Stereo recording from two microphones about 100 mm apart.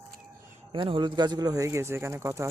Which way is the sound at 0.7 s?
60° right (ahead or behind).